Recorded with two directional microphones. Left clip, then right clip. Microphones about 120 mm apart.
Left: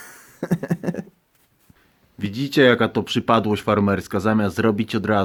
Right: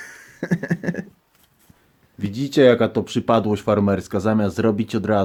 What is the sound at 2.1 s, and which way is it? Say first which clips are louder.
Speech: even; centre (ahead or behind).